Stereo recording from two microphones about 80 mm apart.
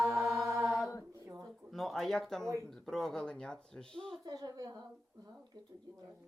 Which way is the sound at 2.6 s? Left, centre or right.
Centre.